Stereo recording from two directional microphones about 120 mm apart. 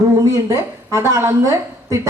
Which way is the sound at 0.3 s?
25° right (ahead or behind).